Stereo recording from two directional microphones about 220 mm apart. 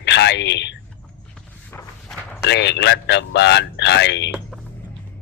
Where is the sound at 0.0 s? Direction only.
50° left (ahead or behind).